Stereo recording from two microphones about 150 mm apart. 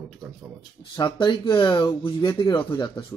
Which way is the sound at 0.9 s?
30° left (ahead or behind).